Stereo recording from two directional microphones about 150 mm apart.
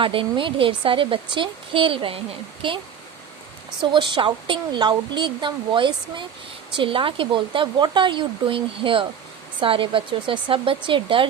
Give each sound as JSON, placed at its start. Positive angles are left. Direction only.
{"t": 0.0, "sound": "speech", "side_deg": -35}